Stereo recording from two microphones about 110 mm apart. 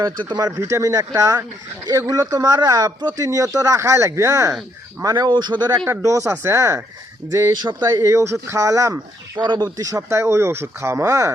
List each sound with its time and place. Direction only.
0.0 s speech: 40° right (ahead or behind)
5.8 s speech: 25° right (ahead or behind)
7.8 s speech: 30° right (ahead or behind)
9.4 s speech: 40° right (ahead or behind)